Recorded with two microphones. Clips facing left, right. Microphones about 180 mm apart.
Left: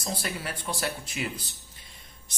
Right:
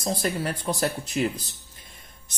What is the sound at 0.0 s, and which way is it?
Speech, 40° right (ahead or behind).